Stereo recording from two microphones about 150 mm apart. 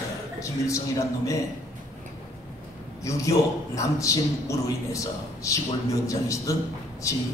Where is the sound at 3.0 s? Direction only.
20° left (ahead or behind).